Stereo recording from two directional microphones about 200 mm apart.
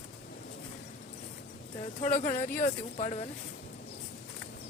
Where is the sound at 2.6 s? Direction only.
35° left (ahead or behind).